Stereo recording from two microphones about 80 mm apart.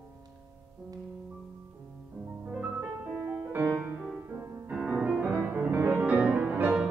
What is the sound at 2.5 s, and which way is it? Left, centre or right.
Music, centre.